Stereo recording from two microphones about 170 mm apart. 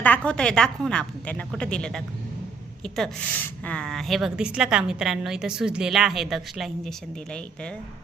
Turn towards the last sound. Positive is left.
turn(degrees=5)  # may be behind; listen again after turning